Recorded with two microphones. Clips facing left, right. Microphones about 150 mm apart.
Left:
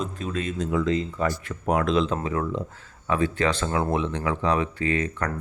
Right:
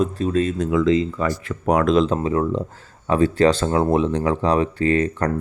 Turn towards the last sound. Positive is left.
turn(degrees=-35)  # may be behind; listen again after turning